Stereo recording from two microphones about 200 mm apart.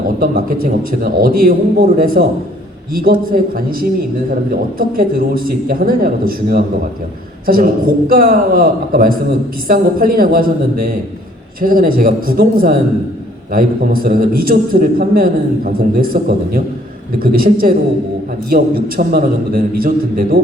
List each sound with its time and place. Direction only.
0.2 s a man's voice: 45° right (ahead or behind)